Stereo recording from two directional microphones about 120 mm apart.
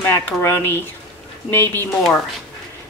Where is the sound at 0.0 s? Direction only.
20° left (ahead or behind).